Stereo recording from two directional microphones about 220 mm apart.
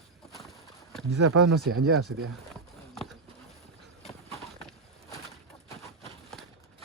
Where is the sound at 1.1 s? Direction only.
85° right.